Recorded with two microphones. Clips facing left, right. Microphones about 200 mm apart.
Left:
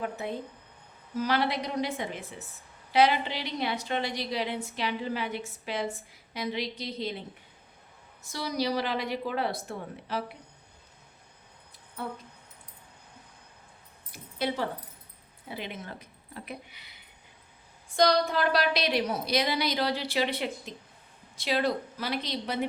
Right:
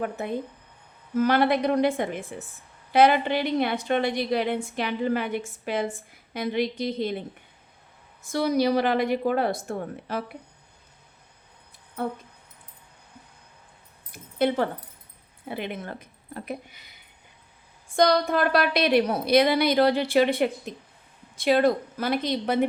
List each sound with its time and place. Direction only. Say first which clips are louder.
0.0 s a woman's voice: right 5 dB; 50° right (ahead or behind)
8.2 s a woman's voice: right 8 dB; 55° right (ahead or behind)
14.1 s speech: right 7 dB; 55° right (ahead or behind)
17.9 s a woman's voice: right 3 dB; 55° right (ahead or behind)